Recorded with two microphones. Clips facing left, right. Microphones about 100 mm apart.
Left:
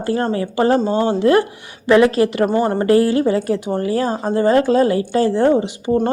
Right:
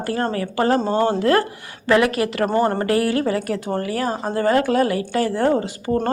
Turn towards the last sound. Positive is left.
turn(degrees=20)  # may be behind; listen again after turning